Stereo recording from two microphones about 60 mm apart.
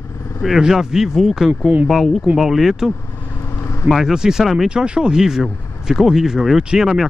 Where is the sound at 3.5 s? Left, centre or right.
Left.